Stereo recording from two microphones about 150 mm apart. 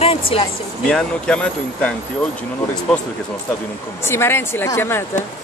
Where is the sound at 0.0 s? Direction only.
40° left (ahead or behind).